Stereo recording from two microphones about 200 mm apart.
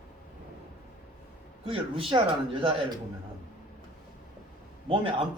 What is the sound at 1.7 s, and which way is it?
Speech, 25° right (ahead or behind).